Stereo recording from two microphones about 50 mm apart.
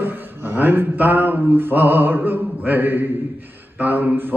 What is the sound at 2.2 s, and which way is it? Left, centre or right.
Mantra, right.